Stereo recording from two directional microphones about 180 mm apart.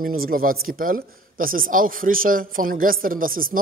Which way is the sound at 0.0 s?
50° right (ahead or behind).